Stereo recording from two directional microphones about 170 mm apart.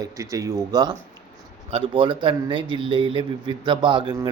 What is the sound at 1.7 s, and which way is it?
Speech, 30° right (ahead or behind).